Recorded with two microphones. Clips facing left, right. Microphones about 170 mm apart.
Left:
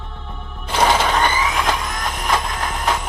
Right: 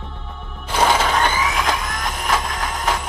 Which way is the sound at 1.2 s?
10° left (ahead or behind).